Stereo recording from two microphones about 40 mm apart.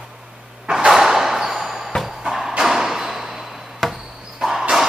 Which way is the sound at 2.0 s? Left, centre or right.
Centre.